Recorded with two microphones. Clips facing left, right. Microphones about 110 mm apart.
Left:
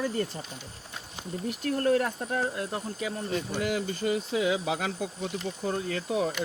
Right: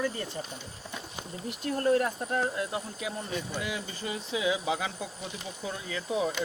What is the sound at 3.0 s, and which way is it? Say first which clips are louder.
Speech: left 3 dB; 60° left (ahead or behind).